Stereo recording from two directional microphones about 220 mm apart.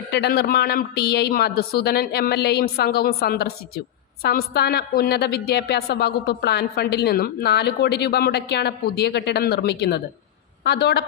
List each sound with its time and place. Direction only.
0.1 s a woman's voice: 50° left (ahead or behind)